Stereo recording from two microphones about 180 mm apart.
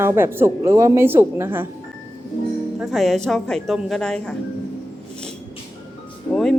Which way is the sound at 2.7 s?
Centre (ahead or behind).